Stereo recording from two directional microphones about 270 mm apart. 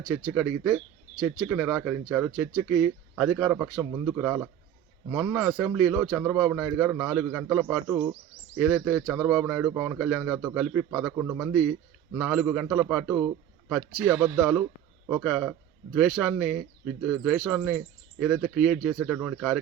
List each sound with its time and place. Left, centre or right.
0.3 s a man's voice: centre
8.5 s a man's voice: centre